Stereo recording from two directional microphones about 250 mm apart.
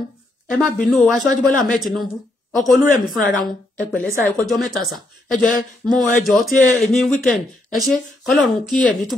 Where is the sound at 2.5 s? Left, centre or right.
Centre.